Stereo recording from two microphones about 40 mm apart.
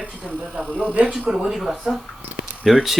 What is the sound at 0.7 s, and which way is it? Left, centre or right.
Speech, left.